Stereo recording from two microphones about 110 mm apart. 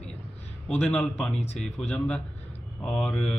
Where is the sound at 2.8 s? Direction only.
10° left (ahead or behind).